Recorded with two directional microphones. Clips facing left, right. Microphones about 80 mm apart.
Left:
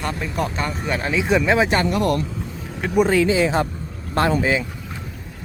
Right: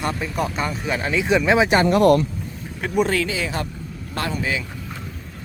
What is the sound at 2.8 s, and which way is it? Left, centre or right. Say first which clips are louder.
Speech: left 3 dB; centre.